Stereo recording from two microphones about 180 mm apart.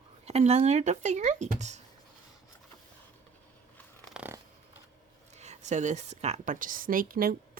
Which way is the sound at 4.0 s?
5° right (ahead or behind).